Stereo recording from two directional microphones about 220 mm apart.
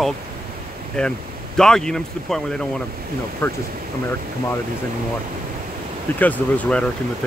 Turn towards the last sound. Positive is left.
turn(degrees=5)  # may be behind; listen again after turning